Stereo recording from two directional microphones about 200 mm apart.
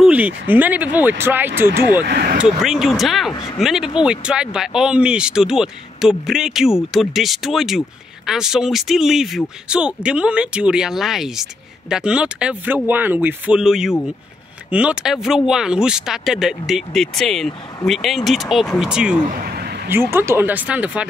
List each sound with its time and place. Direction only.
0.0 s speech: 5° right (ahead or behind)
2.0 s speech: 50° right (ahead or behind)
2.4 s speech: centre (ahead or behind)
3.3 s speech: 20° left (ahead or behind)
3.6 s speech: centre (ahead or behind)
19.3 s a sound: 50° right (ahead or behind)
19.9 s speech: 10° right (ahead or behind)